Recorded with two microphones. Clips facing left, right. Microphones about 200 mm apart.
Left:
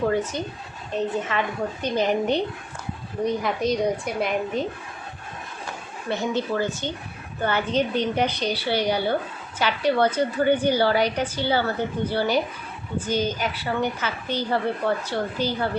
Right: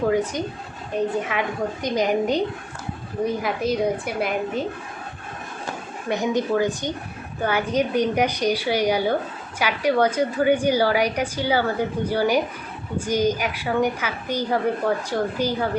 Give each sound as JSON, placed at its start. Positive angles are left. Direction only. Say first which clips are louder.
{"t": 0.1, "sound": "a woman's voice", "louder": "right 3 dB", "side_deg": -15}
{"t": 6.1, "sound": "a woman's voice", "louder": "right 3 dB", "side_deg": -15}